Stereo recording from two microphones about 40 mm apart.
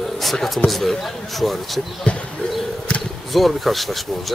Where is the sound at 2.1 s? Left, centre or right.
Left.